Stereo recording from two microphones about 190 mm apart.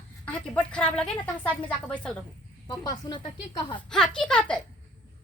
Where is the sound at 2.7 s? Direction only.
20° left (ahead or behind).